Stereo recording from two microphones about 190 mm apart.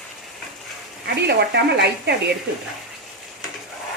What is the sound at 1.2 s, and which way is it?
Speech, 60° right (ahead or behind).